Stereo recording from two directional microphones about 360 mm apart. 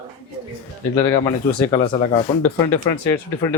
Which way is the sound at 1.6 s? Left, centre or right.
Centre.